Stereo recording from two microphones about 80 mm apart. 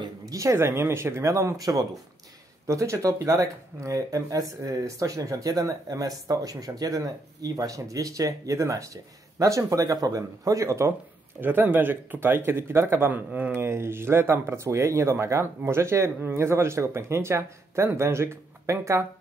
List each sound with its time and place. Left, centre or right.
0.2 s speech: right
11.4 s speech: right